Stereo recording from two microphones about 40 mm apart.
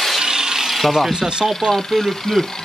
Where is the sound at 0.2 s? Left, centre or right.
Centre.